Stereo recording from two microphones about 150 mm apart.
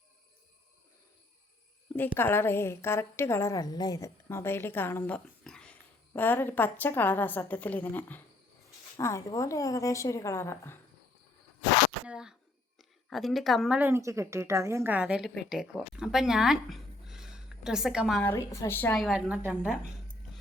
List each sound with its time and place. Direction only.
2.0 s a woman's voice: 15° left (ahead or behind)
12.0 s a woman's voice: 5° right (ahead or behind)
13.7 s a woman's voice: 15° right (ahead or behind)
18.2 s a woman's voice: 15° left (ahead or behind)
18.9 s a woman's voice: centre (ahead or behind)